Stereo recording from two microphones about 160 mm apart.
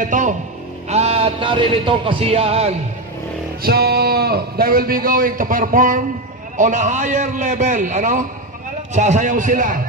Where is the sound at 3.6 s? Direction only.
75° right (ahead or behind); by 9.8 s 55° right (ahead or behind).